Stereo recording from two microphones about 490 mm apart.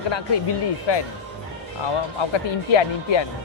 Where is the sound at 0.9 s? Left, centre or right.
Left.